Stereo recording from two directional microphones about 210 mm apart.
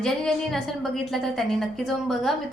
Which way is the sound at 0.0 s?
Centre (ahead or behind).